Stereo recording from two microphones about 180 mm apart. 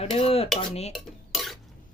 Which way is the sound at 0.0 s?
35° left (ahead or behind).